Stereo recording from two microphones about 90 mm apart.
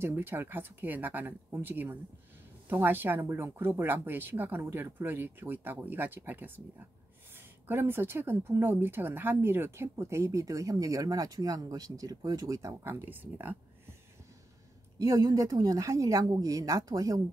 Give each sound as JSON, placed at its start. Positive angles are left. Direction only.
{"t": 0.0, "sound": "speech", "side_deg": -25}
{"t": 12.8, "sound": "speech", "side_deg": -25}
{"t": 15.0, "sound": "speech", "side_deg": -40}